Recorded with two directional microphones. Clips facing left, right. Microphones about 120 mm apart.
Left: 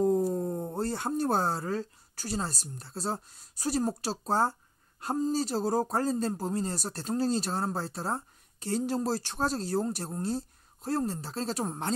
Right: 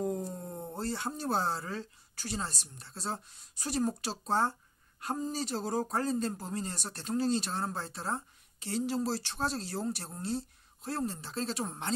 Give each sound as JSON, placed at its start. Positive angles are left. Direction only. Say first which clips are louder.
{"t": 0.3, "sound": "speech", "louder": "left 9 dB", "side_deg": 40}